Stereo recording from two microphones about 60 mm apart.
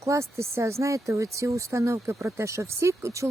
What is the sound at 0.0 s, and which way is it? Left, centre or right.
Speech, right.